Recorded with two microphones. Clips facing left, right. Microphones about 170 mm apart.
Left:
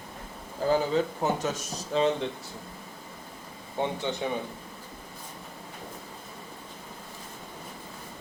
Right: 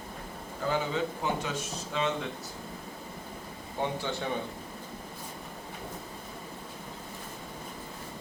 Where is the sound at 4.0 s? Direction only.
20° left (ahead or behind).